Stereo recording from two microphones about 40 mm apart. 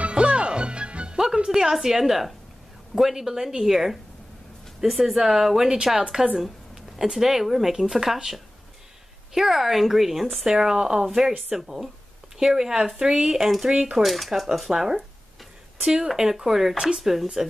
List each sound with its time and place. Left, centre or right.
0.1 s music: right
1.1 s speech: centre
14.7 s speech: centre